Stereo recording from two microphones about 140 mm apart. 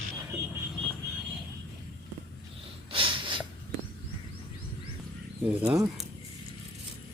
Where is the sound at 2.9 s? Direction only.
40° right (ahead or behind).